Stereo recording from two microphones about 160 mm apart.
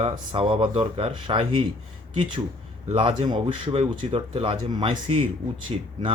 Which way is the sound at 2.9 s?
30° right (ahead or behind).